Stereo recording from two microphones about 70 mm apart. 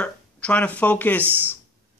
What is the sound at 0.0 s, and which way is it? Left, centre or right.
Speech, centre.